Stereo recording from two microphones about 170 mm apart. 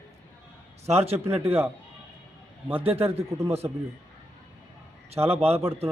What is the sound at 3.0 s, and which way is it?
Speech, 15° right (ahead or behind).